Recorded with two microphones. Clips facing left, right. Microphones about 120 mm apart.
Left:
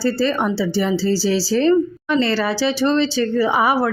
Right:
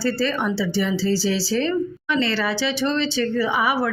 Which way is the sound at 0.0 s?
30° left (ahead or behind).